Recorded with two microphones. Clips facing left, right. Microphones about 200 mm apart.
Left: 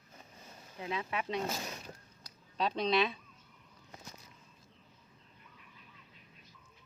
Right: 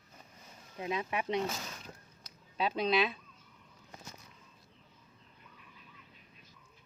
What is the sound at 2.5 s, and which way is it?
Speech, 5° right (ahead or behind).